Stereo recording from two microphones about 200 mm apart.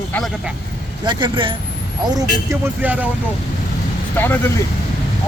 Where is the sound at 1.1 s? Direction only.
25° right (ahead or behind).